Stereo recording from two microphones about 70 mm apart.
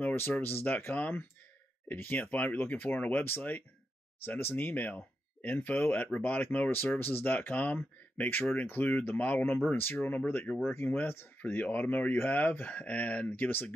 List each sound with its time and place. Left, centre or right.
0.0 s speech: left